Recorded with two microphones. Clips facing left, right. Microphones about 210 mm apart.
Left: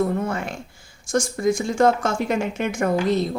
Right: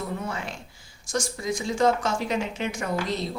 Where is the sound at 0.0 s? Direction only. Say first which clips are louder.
Left 9 dB; 50° left (ahead or behind).